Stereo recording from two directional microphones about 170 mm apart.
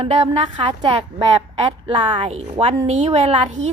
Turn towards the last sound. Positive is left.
turn(degrees=-40)  # may be behind; listen again after turning